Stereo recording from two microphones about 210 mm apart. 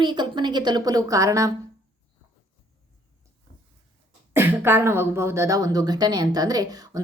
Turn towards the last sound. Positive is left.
turn(degrees=-15)  # may be behind; listen again after turning